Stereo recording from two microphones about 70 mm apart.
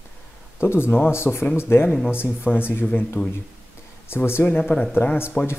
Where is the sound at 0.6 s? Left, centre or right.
Left.